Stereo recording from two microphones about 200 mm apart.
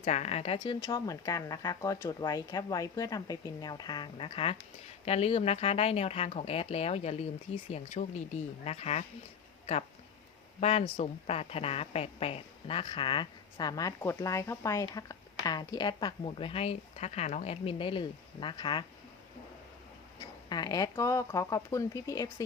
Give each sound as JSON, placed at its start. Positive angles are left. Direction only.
{"t": 0.0, "sound": "speech", "side_deg": 35}
{"t": 10.6, "sound": "speech", "side_deg": 30}
{"t": 20.1, "sound": "speech", "side_deg": 20}